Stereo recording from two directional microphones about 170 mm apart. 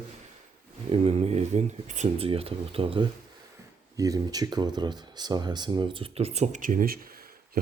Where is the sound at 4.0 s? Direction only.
20° right (ahead or behind).